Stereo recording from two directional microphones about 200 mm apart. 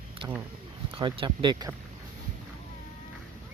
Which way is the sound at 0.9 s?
25° right (ahead or behind).